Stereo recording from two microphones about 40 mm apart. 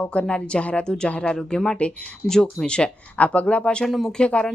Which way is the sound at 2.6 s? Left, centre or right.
Left.